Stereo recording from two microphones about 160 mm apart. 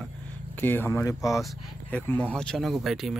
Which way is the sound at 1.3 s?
Centre (ahead or behind).